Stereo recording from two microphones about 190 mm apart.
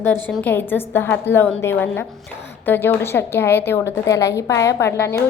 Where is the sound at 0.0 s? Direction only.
10° left (ahead or behind).